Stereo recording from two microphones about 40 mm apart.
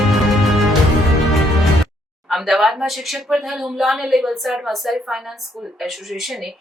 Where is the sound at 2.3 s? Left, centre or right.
Centre.